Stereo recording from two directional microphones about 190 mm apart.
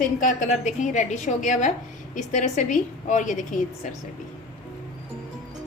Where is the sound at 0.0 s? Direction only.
45° left (ahead or behind).